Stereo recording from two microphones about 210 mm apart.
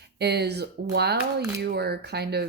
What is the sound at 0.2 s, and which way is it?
A woman's voice, 50° right (ahead or behind).